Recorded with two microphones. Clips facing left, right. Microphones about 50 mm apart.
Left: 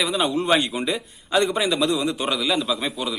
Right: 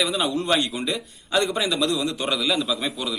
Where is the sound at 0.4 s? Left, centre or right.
Centre.